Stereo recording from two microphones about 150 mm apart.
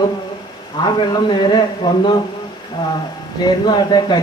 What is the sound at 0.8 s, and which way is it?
A man's voice, 30° left (ahead or behind).